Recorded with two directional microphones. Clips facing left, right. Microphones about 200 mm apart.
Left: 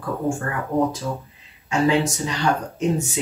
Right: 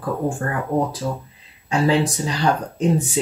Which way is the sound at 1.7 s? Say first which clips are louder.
Right 1 dB; 35° right (ahead or behind).